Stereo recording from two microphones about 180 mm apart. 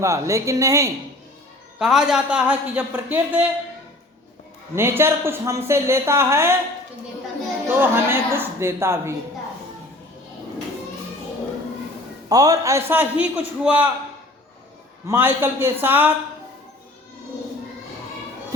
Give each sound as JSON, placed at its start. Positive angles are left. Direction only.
{"t": 0.0, "sound": "a woman's voice", "side_deg": -15}
{"t": 1.8, "sound": "a woman's voice", "side_deg": -5}
{"t": 4.7, "sound": "a woman's voice", "side_deg": -15}
{"t": 7.7, "sound": "a woman's voice", "side_deg": -15}
{"t": 12.3, "sound": "a woman's voice", "side_deg": -20}
{"t": 15.0, "sound": "a woman's voice", "side_deg": -15}